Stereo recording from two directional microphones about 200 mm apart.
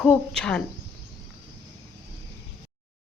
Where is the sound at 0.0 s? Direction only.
5° left (ahead or behind).